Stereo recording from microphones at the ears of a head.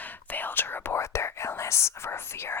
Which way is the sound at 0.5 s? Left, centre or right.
Left.